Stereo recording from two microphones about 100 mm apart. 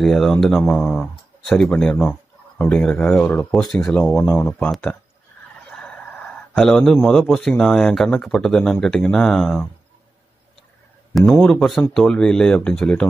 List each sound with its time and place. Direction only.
0.0 s speech: centre (ahead or behind)
4.2 s speech: 25° left (ahead or behind)
4.6 s speech: 5° left (ahead or behind)
11.1 s speech: 5° left (ahead or behind)